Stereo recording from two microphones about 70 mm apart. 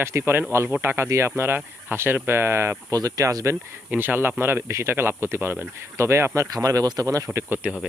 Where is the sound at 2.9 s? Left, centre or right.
Right.